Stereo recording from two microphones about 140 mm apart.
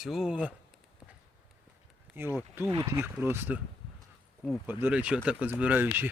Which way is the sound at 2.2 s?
15° right (ahead or behind).